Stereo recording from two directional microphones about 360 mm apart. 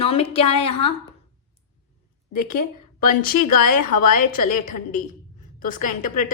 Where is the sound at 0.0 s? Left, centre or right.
Centre.